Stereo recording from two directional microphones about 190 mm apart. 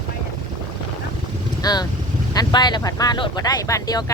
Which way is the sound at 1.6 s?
20° left (ahead or behind).